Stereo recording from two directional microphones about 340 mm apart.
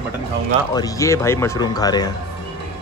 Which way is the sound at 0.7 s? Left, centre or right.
Centre.